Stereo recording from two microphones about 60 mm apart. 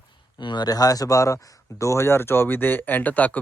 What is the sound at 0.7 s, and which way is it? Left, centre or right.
Speech, left.